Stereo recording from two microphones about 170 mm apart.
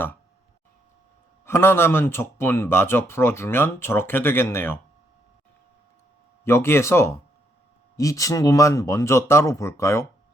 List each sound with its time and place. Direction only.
1.5 s speech: 15° left (ahead or behind)
6.4 s speech: 15° left (ahead or behind)